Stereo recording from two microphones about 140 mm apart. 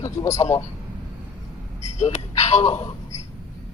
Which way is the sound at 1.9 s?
55° left (ahead or behind).